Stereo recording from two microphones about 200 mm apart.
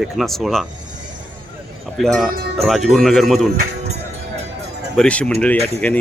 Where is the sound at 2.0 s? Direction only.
Centre (ahead or behind).